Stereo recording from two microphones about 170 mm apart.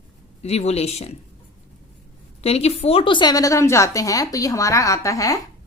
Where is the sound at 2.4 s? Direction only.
35° left (ahead or behind).